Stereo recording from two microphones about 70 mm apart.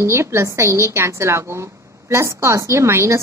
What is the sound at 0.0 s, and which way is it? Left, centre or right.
Speech, right.